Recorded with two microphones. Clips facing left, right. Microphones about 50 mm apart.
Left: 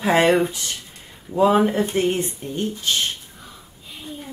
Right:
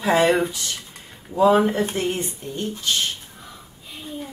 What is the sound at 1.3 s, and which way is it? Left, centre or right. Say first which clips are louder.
Speech: even; left.